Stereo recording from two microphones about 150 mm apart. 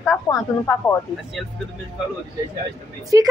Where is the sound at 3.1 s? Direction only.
20° right (ahead or behind).